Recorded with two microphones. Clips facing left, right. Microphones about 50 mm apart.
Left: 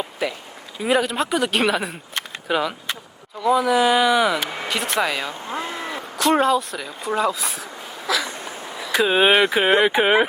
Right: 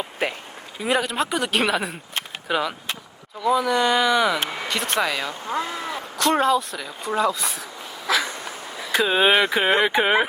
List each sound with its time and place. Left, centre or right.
0.2 s speech: right
0.9 s speech: centre
5.3 s a sound: left
6.1 s speech: centre
8.1 s a sound: right
9.0 s fowl: centre